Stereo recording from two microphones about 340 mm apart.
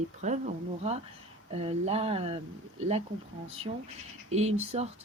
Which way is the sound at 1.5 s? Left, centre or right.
Centre.